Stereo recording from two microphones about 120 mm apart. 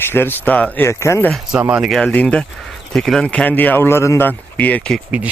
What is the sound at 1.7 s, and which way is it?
Speech, 5° right (ahead or behind).